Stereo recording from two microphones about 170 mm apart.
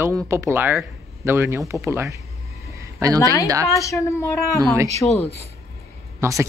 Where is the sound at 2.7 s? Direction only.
20° right (ahead or behind).